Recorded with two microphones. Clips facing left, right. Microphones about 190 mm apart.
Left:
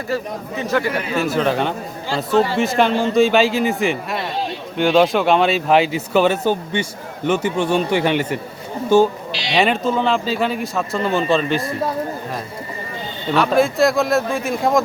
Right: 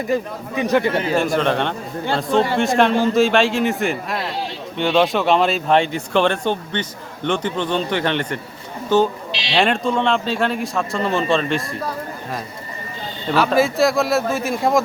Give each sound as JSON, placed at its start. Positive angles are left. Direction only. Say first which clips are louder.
{"t": 0.1, "sound": "a man's voice", "louder": "left 1 dB", "side_deg": -15}
{"t": 1.2, "sound": "speech", "louder": "even", "side_deg": 5}
{"t": 13.3, "sound": "speech", "louder": "left 1 dB", "side_deg": 0}